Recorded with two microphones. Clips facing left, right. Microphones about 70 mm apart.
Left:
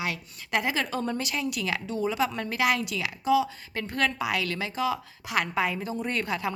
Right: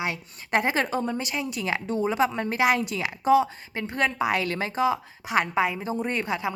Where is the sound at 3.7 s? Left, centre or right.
Right.